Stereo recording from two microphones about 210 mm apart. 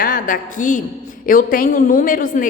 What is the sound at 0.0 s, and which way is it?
A woman's voice, 40° left (ahead or behind).